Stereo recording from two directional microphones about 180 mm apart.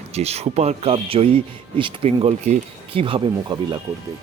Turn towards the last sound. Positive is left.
turn(degrees=-25)  # may be behind; listen again after turning